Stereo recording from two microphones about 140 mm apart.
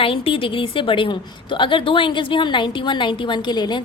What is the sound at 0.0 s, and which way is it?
A woman's voice, 40° left (ahead or behind).